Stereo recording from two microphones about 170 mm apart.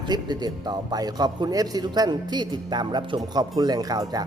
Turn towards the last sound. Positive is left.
turn(degrees=-20)  # may be behind; listen again after turning